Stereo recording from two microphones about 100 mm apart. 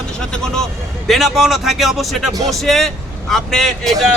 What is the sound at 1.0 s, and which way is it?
Speech, centre (ahead or behind).